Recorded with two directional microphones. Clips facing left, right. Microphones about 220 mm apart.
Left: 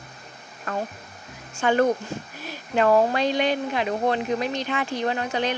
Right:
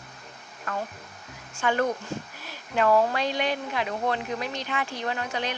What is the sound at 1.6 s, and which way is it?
Speech, 25° left (ahead or behind).